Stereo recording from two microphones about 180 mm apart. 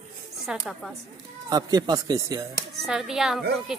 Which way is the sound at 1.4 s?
20° right (ahead or behind).